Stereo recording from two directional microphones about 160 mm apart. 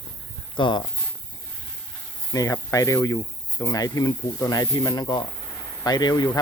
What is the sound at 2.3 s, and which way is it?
Speech, 20° left (ahead or behind).